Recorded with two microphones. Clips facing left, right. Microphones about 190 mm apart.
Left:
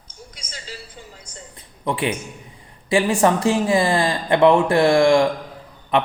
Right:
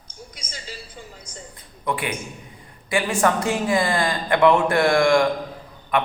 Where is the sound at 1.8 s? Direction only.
25° left (ahead or behind).